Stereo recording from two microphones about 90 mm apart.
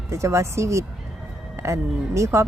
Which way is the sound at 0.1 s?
35° right (ahead or behind).